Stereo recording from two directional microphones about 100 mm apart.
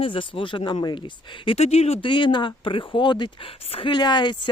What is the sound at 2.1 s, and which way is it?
Speech, 50° left (ahead or behind).